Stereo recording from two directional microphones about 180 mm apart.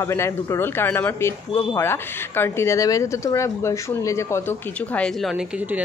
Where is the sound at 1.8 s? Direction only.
15° left (ahead or behind).